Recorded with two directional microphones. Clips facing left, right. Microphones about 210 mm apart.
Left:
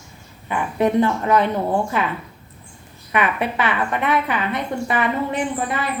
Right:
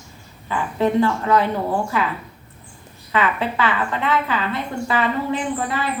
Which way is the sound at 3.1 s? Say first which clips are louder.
Even; 20° left (ahead or behind).